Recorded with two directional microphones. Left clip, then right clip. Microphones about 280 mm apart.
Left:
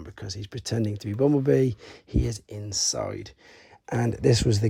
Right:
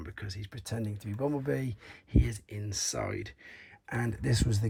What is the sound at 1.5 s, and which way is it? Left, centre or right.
Speech, left.